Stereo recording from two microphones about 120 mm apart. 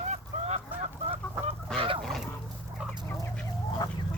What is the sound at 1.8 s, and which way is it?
Fowl, 45° right (ahead or behind).